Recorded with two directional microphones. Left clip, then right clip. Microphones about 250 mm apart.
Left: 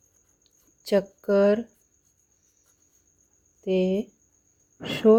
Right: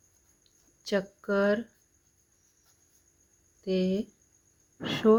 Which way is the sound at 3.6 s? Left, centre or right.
Centre.